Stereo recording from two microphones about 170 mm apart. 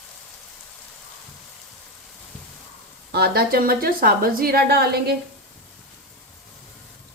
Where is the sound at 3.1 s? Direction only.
70° right (ahead or behind).